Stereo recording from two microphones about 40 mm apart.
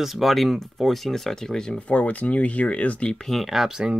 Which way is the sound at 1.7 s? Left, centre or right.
Left.